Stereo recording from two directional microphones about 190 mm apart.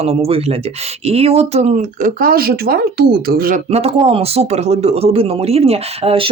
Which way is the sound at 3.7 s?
35° right (ahead or behind).